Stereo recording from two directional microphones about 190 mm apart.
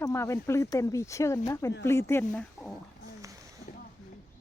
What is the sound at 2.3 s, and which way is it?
Speech, centre (ahead or behind).